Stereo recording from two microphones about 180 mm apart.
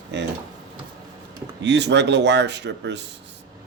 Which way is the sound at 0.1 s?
75° right (ahead or behind).